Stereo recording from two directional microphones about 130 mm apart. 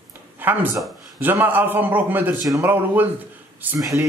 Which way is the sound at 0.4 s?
15° right (ahead or behind).